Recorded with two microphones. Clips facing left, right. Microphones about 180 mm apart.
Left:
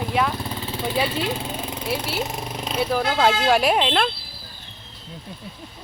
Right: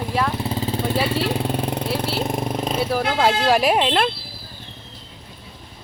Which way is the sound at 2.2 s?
55° right (ahead or behind).